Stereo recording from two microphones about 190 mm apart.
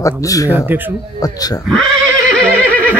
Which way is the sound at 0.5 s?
10° right (ahead or behind).